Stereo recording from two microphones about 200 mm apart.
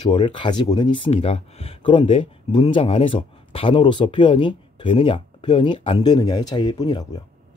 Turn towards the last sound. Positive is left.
turn(degrees=20)  # may be behind; listen again after turning